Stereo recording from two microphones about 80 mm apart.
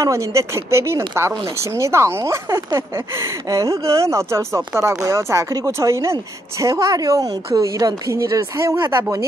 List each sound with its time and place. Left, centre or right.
0.0 s a woman's voice: right